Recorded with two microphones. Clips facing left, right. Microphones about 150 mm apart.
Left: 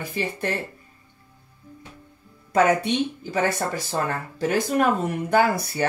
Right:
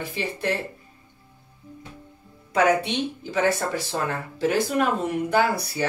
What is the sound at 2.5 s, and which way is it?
Speech, 45° left (ahead or behind).